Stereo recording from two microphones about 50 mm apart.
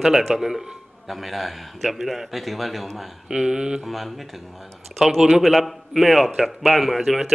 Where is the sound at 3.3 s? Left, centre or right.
Centre.